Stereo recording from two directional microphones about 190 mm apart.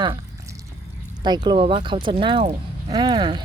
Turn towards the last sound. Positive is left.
turn(degrees=-25)  # may be behind; listen again after turning